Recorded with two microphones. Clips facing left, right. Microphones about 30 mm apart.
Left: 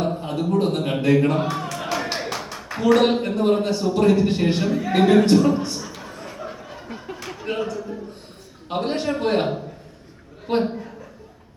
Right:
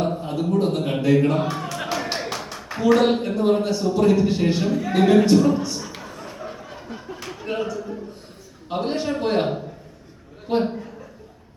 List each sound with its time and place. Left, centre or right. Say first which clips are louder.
0.2 s a sound: even; left
0.6 s speech: even; left
0.9 s a man's voice: even; centre
2.0 s a sound: even; centre
3.4 s a man's voice: even; centre
3.8 s speech: even; left
4.1 s speech: even; left
4.6 s a man's voice: left 1 dB; centre
6.4 s a sound: even; centre
8.7 s a man's voice: left 1 dB; centre
10.6 s a man's voice: even; centre